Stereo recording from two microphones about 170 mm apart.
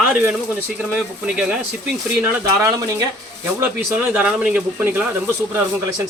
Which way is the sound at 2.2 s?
15° right (ahead or behind).